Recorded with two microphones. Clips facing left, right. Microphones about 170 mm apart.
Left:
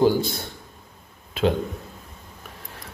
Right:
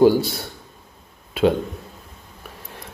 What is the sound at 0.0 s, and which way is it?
Speech, 10° right (ahead or behind).